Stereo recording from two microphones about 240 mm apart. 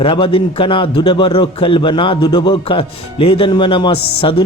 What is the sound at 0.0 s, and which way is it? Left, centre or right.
A man's voice, left.